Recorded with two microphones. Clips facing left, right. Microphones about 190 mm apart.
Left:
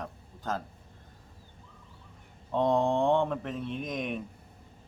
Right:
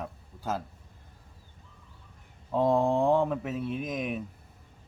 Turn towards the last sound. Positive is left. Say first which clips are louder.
# right 2 dB
turn(degrees=-5)  # may be behind; listen again after turning